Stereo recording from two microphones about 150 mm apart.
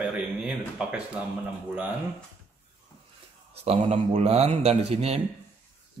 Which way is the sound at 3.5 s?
45° right (ahead or behind).